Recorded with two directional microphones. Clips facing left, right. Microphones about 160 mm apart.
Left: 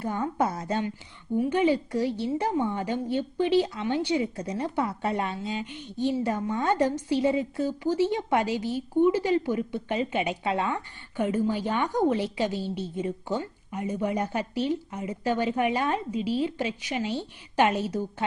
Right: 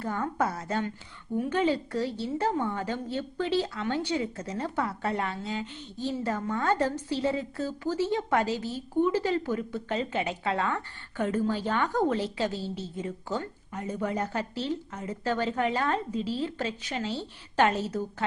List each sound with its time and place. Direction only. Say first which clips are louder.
0.0 s a woman's voice: left 2 dB; 15° left (ahead or behind)